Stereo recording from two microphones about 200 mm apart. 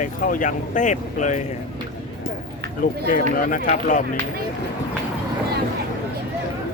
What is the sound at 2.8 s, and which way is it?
Speech, 45° left (ahead or behind).